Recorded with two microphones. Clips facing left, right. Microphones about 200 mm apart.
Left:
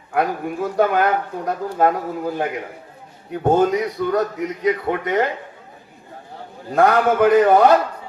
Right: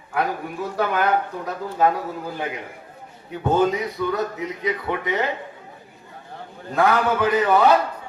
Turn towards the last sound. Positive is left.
turn(degrees=45)  # may be behind; listen again after turning